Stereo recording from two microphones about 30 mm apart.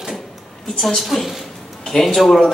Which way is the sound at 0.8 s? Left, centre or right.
Centre.